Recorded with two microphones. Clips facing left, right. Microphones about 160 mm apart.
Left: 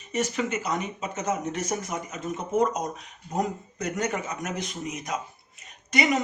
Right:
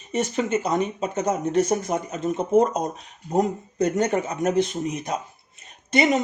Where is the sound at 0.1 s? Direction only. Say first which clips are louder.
Right 4 dB; 30° right (ahead or behind).